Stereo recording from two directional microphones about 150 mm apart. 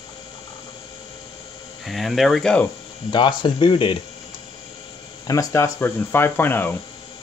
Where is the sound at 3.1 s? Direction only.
30° left (ahead or behind).